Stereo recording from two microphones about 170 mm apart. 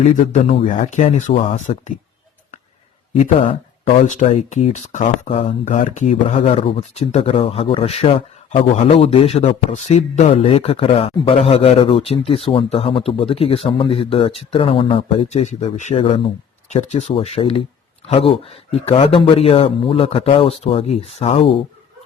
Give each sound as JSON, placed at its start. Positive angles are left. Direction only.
{"t": 0.0, "sound": "speech", "side_deg": 40}
{"t": 4.0, "sound": "speech", "side_deg": 45}